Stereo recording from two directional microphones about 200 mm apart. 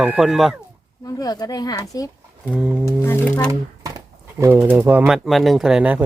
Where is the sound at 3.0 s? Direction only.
15° left (ahead or behind).